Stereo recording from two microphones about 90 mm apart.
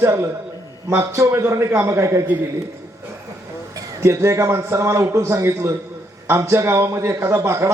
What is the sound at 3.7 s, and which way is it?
A man's voice, 30° right (ahead or behind).